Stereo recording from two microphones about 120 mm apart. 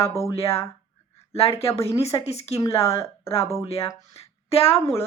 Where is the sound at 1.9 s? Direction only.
55° left (ahead or behind).